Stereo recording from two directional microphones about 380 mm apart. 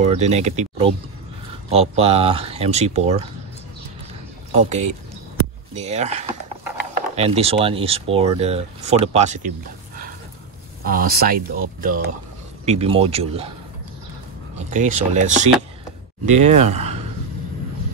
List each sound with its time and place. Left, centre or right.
0.0 s speech: centre
4.6 s speech: centre
10.8 s speech: right
14.7 s speech: centre